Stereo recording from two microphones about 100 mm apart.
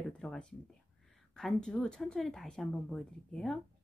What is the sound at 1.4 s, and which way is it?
Speech, 10° left (ahead or behind).